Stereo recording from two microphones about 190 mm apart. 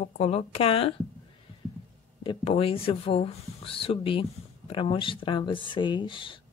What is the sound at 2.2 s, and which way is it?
Speech, 30° left (ahead or behind).